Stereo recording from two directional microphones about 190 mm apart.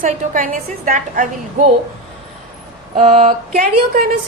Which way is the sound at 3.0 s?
40° right (ahead or behind).